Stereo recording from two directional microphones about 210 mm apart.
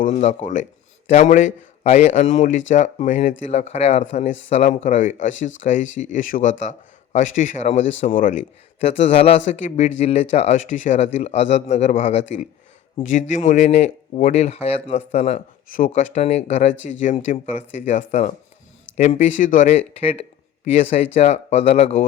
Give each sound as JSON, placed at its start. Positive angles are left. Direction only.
{"t": 0.0, "sound": "speech", "side_deg": 35}